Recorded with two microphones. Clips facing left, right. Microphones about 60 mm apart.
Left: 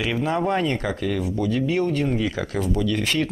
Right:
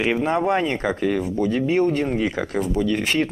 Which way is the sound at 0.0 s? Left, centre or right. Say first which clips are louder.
Right 3 dB; right.